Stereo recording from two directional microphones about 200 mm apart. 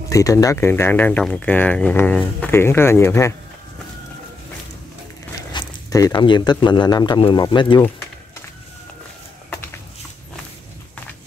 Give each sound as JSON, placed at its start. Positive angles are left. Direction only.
{"t": 0.1, "sound": "speech", "side_deg": 15}
{"t": 5.5, "sound": "speech", "side_deg": 20}